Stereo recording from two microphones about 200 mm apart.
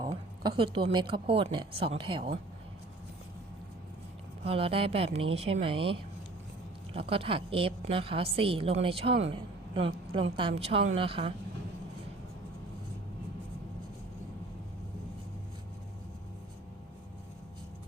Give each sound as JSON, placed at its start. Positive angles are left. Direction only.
{"t": 0.0, "sound": "a woman's voice", "side_deg": -25}
{"t": 4.4, "sound": "a woman's voice", "side_deg": -30}